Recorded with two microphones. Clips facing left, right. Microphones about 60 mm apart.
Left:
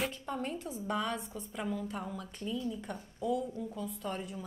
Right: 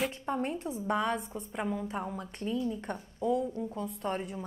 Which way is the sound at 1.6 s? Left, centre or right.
Right.